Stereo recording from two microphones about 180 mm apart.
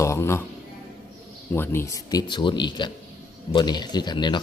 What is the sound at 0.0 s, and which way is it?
Speech, 15° left (ahead or behind).